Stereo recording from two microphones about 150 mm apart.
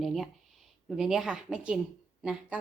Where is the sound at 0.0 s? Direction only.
Centre (ahead or behind).